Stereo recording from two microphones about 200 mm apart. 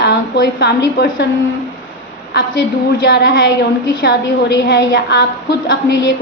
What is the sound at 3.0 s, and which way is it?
A woman's voice, 60° left (ahead or behind).